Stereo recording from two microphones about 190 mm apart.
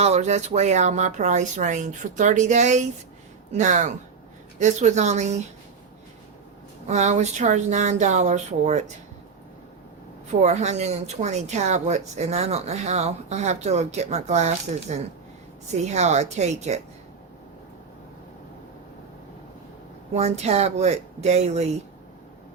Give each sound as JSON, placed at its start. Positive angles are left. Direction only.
{"t": 0.0, "sound": "speech", "side_deg": -35}
{"t": 6.8, "sound": "speech", "side_deg": -35}
{"t": 10.4, "sound": "speech", "side_deg": -35}
{"t": 20.1, "sound": "speech", "side_deg": -35}